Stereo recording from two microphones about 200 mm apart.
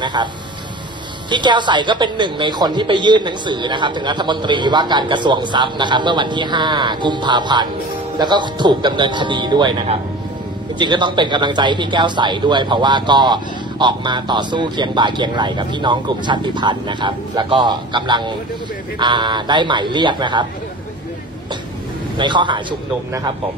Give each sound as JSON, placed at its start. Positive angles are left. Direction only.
{"t": 0.0, "sound": "speech", "side_deg": -20}
{"t": 1.3, "sound": "speech", "side_deg": -25}
{"t": 22.1, "sound": "speech", "side_deg": -25}